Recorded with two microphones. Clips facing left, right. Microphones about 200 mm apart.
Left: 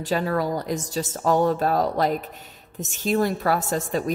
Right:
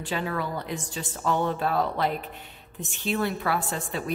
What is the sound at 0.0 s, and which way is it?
A woman's voice, 40° left (ahead or behind).